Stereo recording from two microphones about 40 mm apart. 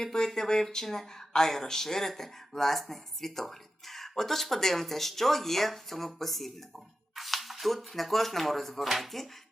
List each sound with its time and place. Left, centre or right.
0.0 s speech: centre